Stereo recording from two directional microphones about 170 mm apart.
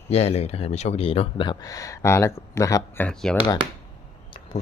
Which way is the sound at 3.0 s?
5° left (ahead or behind).